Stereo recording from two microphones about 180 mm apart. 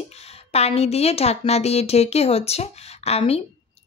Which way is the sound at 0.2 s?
35° left (ahead or behind).